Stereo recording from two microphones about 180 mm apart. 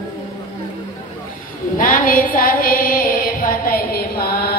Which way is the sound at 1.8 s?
50° left (ahead or behind).